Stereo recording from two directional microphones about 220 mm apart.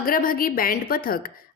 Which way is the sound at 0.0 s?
40° left (ahead or behind).